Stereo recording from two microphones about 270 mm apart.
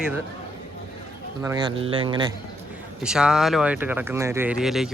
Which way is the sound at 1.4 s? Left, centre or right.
Centre.